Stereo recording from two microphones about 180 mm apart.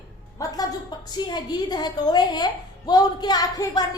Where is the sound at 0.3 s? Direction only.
20° left (ahead or behind).